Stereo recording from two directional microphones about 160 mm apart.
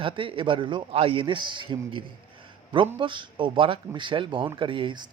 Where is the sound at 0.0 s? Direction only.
35° right (ahead or behind).